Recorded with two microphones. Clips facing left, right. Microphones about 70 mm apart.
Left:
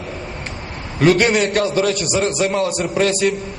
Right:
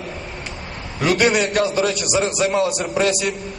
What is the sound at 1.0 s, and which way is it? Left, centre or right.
A man's voice, left.